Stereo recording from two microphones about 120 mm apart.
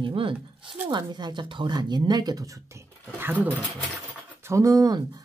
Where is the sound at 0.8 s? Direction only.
35° right (ahead or behind); by 3.4 s 15° right (ahead or behind).